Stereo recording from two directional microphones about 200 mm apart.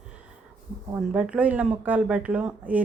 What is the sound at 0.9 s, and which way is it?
Speech, 5° right (ahead or behind).